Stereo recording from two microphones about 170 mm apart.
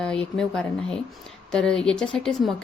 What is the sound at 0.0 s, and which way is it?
Speech, 5° left (ahead or behind).